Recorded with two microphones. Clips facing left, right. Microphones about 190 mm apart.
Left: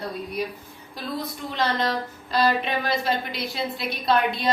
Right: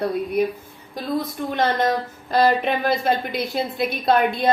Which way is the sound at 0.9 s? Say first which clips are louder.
Right 6 dB; 50° right (ahead or behind).